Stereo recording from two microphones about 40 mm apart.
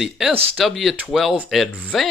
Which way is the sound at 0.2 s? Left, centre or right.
Right.